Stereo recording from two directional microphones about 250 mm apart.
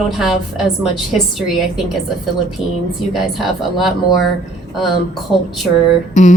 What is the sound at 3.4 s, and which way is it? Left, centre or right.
Speech, centre.